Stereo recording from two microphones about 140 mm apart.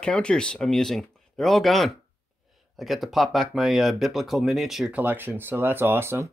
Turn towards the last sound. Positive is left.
turn(degrees=-15)  # may be behind; listen again after turning